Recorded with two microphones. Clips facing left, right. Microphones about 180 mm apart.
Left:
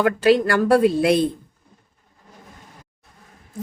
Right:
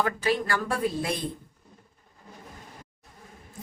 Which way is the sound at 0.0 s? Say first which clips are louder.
Left 10 dB; 75° left (ahead or behind).